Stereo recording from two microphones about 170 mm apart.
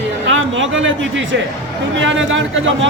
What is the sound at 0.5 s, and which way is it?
A man's voice, 90° right.